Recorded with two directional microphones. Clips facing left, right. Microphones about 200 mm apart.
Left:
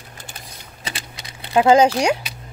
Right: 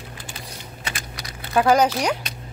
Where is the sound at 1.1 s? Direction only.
25° left (ahead or behind).